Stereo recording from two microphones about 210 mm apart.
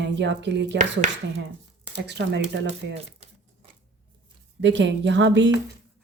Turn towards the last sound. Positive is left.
turn(degrees=-60)  # may be behind; listen again after turning